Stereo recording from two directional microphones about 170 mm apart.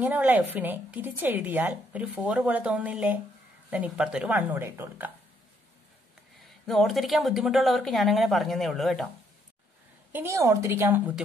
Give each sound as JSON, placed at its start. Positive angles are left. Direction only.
{"t": 0.0, "sound": "speech", "side_deg": -10}
{"t": 6.6, "sound": "a woman's voice", "side_deg": 0}
{"t": 10.1, "sound": "speech", "side_deg": -15}